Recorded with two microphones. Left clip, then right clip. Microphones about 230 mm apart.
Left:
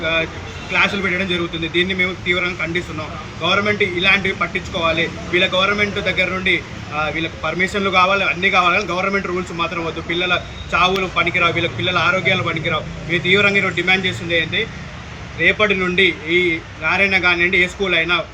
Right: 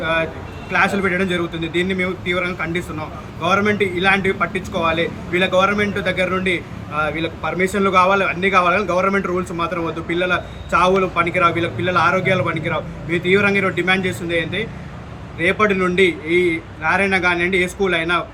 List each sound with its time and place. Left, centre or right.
0.7 s a man's voice: centre